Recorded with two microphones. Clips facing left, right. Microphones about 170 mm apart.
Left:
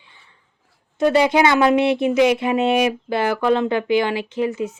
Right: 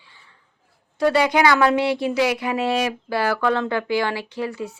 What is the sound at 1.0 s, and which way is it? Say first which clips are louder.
Speech: left 2 dB; 20° left (ahead or behind).